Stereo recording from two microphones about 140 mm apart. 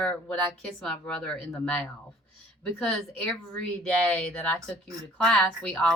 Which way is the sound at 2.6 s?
5° left (ahead or behind).